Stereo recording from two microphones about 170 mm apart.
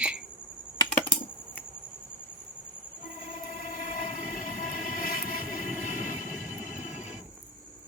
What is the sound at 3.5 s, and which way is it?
Train, 55° left (ahead or behind).